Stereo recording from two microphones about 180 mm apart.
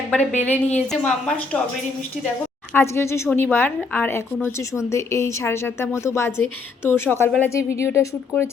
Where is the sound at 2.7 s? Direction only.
15° left (ahead or behind).